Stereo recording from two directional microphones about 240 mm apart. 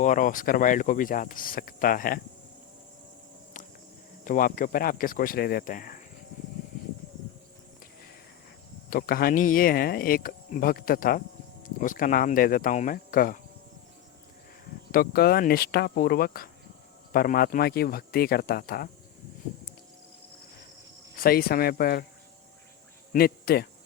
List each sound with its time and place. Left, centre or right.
0.0 s speech: left
4.2 s speech: left
8.9 s speech: left
14.9 s speech: left
21.2 s speech: left
23.1 s speech: left